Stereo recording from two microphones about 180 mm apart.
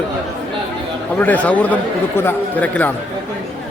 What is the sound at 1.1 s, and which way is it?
A man's voice, 10° left (ahead or behind).